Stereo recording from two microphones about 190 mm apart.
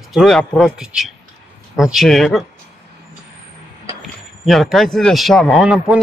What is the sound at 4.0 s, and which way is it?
Speech, centre (ahead or behind).